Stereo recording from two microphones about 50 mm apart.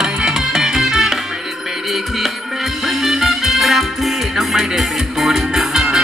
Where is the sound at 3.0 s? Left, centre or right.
Centre.